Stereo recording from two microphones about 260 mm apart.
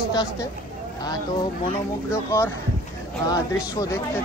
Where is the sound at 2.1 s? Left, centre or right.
Centre.